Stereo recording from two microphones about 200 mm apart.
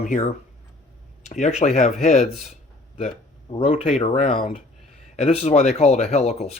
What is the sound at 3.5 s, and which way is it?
Speech, 25° left (ahead or behind).